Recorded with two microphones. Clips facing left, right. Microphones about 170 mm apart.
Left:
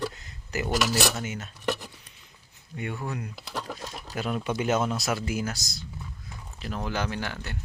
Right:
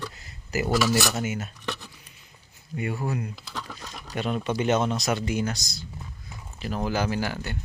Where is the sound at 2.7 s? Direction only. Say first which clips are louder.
Right 4 dB; 5° right (ahead or behind).